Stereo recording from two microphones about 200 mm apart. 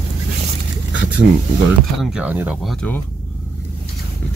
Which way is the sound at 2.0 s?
5° right (ahead or behind).